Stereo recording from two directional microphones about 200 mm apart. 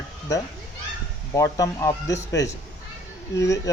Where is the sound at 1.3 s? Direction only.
15° left (ahead or behind).